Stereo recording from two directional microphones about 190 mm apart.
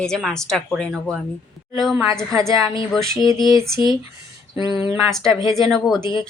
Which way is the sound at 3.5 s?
15° right (ahead or behind).